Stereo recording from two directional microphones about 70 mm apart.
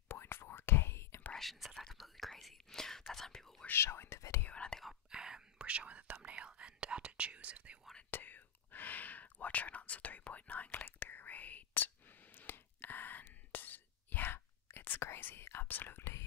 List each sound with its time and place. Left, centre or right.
0.1 s whispering: left
1.3 s whispering: centre
3.6 s whispering: left
4.5 s whispering: centre
5.1 s whispering: centre
8.1 s whispering: left